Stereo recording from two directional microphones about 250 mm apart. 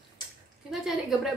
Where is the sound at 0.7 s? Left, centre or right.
Centre.